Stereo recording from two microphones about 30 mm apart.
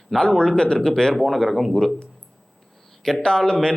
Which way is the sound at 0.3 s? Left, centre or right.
Left.